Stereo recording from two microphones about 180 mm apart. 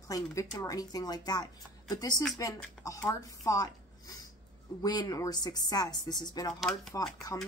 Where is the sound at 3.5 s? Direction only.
20° left (ahead or behind).